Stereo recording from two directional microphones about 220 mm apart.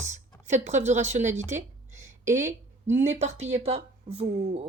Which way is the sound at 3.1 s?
30° right (ahead or behind).